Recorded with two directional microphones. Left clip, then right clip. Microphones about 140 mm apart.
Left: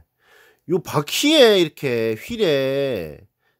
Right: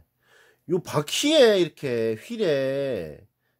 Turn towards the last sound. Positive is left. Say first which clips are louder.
# left 5 dB
turn(degrees=45)  # may be behind; listen again after turning